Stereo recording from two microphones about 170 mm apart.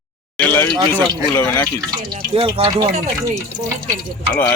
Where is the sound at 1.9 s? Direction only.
30° right (ahead or behind).